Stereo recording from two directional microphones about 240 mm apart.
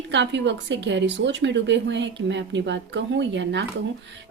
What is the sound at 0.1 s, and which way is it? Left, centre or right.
A woman's voice, right.